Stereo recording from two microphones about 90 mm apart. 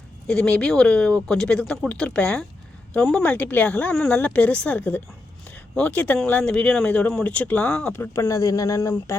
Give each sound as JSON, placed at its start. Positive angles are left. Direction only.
{"t": 0.3, "sound": "speech", "side_deg": 10}
{"t": 7.9, "sound": "speech", "side_deg": 25}